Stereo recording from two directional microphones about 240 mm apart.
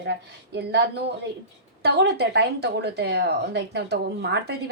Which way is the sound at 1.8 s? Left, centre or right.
Right.